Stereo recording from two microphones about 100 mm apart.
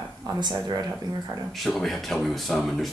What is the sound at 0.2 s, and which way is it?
Speech, 45° right (ahead or behind).